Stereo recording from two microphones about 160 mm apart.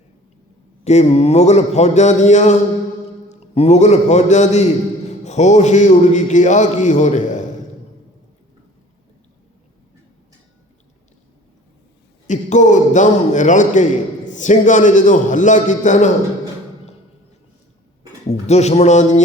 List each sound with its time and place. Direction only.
0.9 s a man's voice: 45° left (ahead or behind)
12.3 s a man's voice: 50° left (ahead or behind)
18.3 s a man's voice: 45° left (ahead or behind)